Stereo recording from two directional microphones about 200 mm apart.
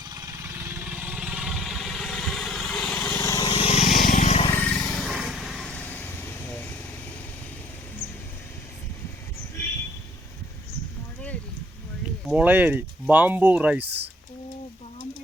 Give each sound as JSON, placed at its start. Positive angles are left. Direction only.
{"t": 0.1, "sound": "vehicle", "side_deg": -15}
{"t": 4.5, "sound": "vehicle", "side_deg": 5}
{"t": 12.3, "sound": "speech", "side_deg": -5}
{"t": 13.8, "sound": "speech", "side_deg": -55}